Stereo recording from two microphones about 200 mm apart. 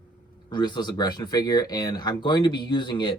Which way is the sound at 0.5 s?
20° left (ahead or behind).